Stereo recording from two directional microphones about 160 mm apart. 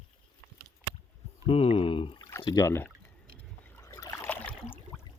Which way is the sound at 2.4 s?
20° left (ahead or behind).